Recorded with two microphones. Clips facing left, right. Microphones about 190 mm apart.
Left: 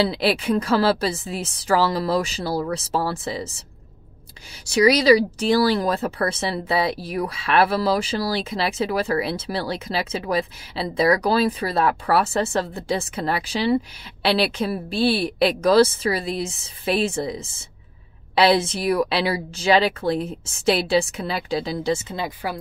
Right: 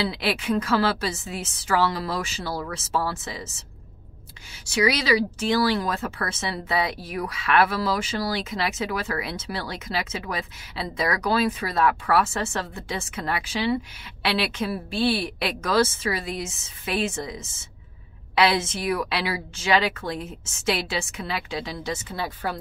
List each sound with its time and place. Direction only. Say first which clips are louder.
0.0 s speech: left 5 dB; 35° left (ahead or behind)
4.6 s speech: left 7 dB; 35° left (ahead or behind)
22.1 s speech: left 2 dB; 15° left (ahead or behind)